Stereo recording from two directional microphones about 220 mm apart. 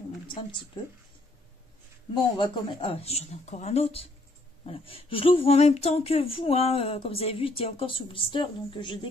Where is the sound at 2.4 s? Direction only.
25° left (ahead or behind).